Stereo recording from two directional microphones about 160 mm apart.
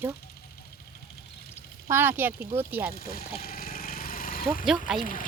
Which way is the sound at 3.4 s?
70° left (ahead or behind).